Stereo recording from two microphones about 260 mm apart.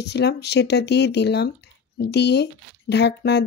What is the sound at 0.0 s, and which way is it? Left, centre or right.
Speech, left.